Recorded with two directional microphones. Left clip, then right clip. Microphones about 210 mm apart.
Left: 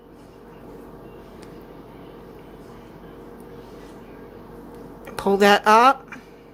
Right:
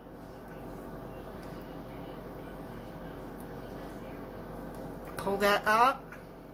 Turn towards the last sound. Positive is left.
turn(degrees=45)  # may be behind; listen again after turning